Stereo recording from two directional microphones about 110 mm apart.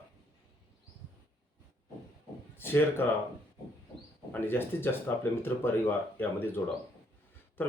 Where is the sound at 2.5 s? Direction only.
20° left (ahead or behind).